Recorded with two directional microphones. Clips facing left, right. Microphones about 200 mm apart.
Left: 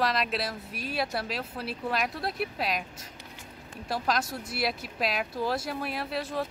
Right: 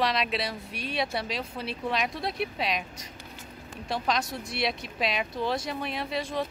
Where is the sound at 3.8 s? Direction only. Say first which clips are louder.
Even; 5° left (ahead or behind).